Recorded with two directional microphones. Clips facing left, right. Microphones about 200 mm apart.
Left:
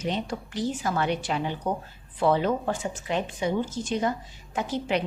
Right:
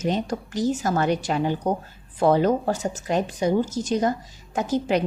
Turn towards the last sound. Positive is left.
turn(degrees=-45)  # may be behind; listen again after turning